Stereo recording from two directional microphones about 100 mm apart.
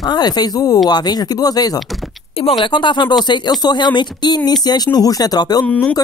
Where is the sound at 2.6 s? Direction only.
55° left (ahead or behind).